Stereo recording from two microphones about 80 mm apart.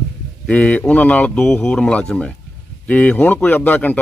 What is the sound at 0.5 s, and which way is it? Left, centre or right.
Speech, centre.